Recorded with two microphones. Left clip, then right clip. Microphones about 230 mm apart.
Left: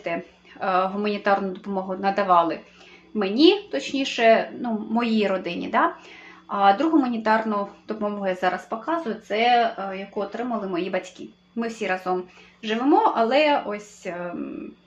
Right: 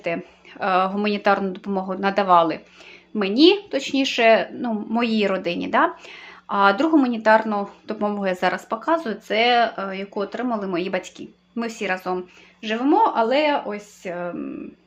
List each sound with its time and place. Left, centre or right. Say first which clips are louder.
0.1 s speech: right 1 dB; right